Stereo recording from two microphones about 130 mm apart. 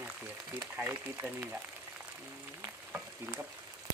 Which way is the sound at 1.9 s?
10° right (ahead or behind).